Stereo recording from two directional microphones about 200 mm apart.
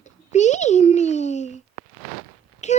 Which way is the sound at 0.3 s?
35° left (ahead or behind).